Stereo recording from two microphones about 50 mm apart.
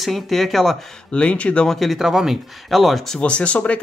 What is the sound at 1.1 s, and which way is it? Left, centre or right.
Speech, left.